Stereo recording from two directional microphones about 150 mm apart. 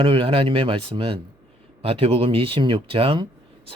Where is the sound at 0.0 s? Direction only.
35° right (ahead or behind).